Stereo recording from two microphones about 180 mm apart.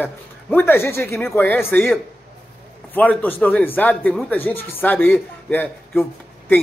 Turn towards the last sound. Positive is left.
turn(degrees=10)  # may be behind; listen again after turning